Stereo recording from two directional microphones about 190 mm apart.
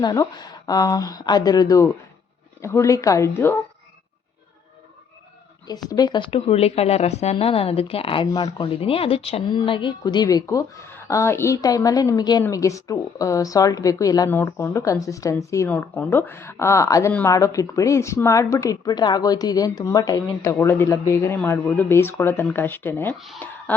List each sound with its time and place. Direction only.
0.0 s speech: 20° left (ahead or behind)
5.6 s speech: 20° left (ahead or behind)
23.1 s speech: centre (ahead or behind)